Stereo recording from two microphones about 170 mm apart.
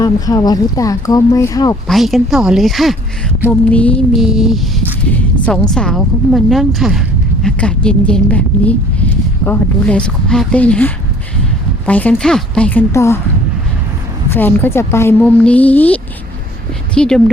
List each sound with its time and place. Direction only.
0.0 s speech: 20° left (ahead or behind)
1.9 s a woman's voice: centre (ahead or behind)
12.9 s a woman's voice: 15° left (ahead or behind)
14.3 s a woman's voice: 10° left (ahead or behind)